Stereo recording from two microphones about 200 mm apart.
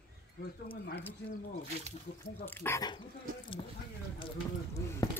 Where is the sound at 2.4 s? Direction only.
10° left (ahead or behind).